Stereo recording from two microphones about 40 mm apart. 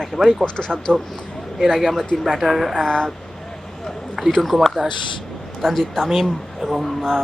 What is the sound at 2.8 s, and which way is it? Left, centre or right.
Speech, left.